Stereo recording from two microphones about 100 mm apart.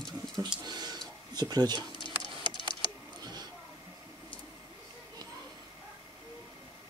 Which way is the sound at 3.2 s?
45° right (ahead or behind).